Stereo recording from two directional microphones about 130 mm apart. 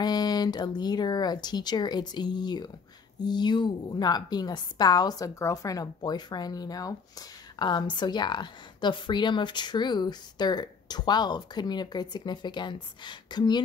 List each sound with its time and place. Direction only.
0.0 s a woman's voice: 30° left (ahead or behind)